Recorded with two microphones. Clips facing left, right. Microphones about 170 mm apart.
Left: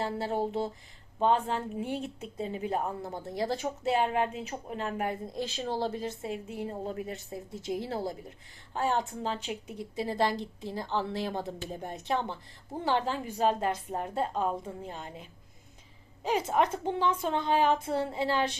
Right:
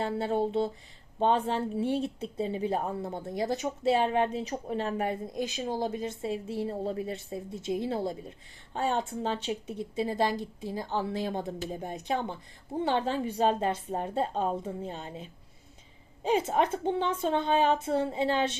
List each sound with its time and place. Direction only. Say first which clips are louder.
0.0 s speech: right 2 dB; 25° right (ahead or behind)